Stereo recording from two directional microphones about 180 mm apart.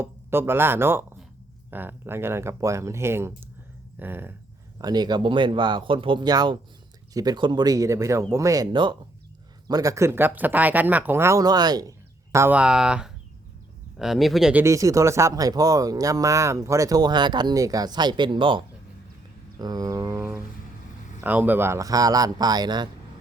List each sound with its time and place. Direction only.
0.0 s speech: 15° right (ahead or behind)
4.8 s speech: 20° right (ahead or behind); by 14.6 s centre (ahead or behind)
14.6 s speech: 15° right (ahead or behind)
19.5 s a sound: 20° right (ahead or behind)
21.2 s speech: 10° right (ahead or behind)